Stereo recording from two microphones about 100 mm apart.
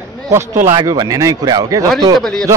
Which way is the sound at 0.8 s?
40° right (ahead or behind).